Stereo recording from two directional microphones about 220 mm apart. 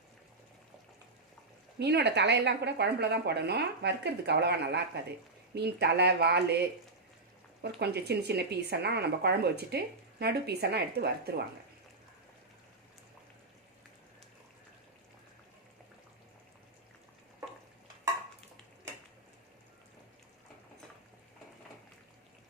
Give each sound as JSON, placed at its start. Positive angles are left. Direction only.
{"t": 1.8, "sound": "speech", "side_deg": -50}
{"t": 7.6, "sound": "speech", "side_deg": -50}